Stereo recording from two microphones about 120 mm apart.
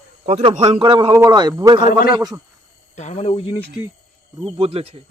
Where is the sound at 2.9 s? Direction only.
75° left (ahead or behind); by 3.6 s 55° left (ahead or behind).